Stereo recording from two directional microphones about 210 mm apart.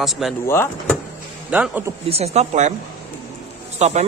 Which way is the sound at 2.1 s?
30° right (ahead or behind).